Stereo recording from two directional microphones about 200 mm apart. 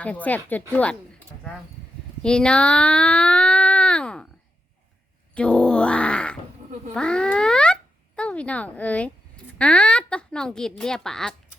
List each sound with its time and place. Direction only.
0.0 s speech: 5° left (ahead or behind)
2.2 s speech: 5° left (ahead or behind)
5.3 s grunt: 5° left (ahead or behind)
6.9 s speech: 5° left (ahead or behind)